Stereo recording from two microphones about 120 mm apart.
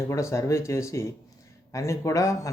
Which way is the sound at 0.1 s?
25° left (ahead or behind).